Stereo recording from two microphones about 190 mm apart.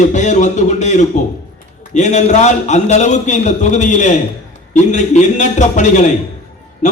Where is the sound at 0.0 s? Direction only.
40° left (ahead or behind).